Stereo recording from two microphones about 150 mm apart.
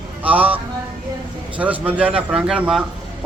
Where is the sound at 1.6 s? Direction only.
10° right (ahead or behind).